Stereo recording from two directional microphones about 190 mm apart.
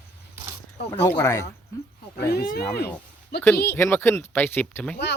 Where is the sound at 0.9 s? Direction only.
15° left (ahead or behind).